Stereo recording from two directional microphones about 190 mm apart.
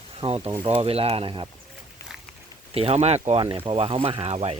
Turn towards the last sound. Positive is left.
turn(degrees=-30)  # may be behind; listen again after turning